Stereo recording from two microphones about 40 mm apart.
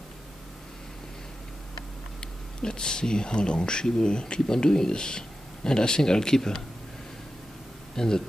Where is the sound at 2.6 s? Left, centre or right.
Centre.